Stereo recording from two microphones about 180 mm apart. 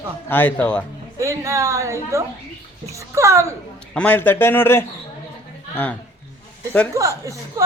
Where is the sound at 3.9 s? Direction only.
10° left (ahead or behind).